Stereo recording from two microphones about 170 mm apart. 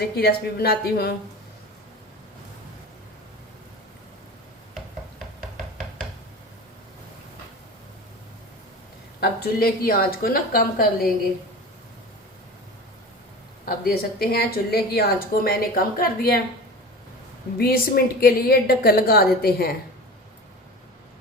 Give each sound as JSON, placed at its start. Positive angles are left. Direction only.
{"t": 0.2, "sound": "speech", "side_deg": 65}
{"t": 9.2, "sound": "speech", "side_deg": 65}
{"t": 13.7, "sound": "speech", "side_deg": 65}
{"t": 17.6, "sound": "speech", "side_deg": 60}